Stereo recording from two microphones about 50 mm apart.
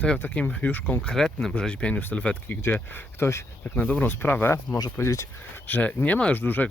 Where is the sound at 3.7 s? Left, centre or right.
Left.